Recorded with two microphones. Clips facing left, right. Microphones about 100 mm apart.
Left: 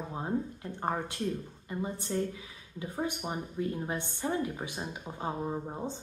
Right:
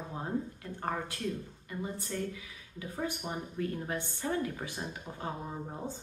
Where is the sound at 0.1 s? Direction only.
20° left (ahead or behind).